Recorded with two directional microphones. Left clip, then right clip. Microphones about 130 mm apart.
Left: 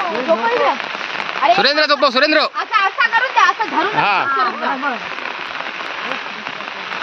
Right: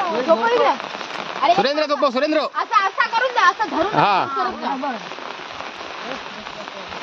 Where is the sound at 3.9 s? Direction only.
60° right (ahead or behind).